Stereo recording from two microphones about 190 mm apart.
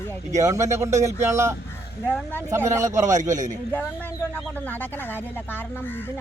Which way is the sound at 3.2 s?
40° right (ahead or behind).